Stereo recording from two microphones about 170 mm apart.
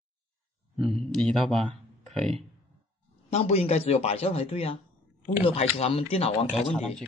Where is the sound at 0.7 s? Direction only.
Centre (ahead or behind).